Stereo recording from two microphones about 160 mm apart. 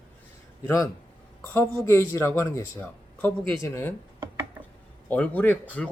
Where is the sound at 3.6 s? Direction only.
15° left (ahead or behind).